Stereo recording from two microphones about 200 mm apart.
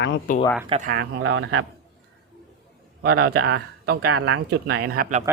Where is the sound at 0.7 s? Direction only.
35° right (ahead or behind).